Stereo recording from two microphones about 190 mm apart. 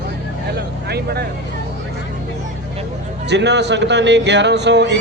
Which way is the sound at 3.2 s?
65° right (ahead or behind).